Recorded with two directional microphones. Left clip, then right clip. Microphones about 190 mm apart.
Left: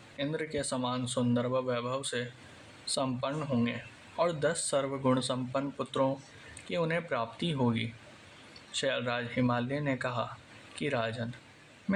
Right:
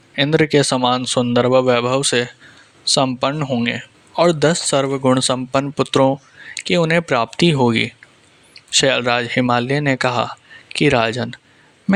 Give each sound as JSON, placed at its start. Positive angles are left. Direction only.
{"t": 0.2, "sound": "speech", "side_deg": -55}